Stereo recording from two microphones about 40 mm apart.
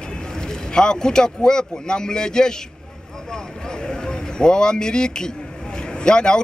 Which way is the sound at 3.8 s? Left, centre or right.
Centre.